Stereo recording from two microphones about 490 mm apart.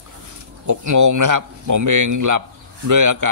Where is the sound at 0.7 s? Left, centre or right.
Right.